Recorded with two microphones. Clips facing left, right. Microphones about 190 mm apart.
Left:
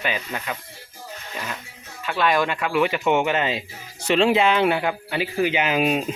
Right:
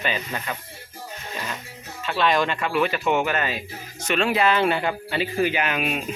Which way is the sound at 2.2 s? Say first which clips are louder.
Left 1 dB; 10° left (ahead or behind).